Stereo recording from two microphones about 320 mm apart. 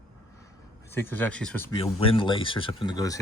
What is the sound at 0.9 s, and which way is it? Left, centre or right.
Speech, centre.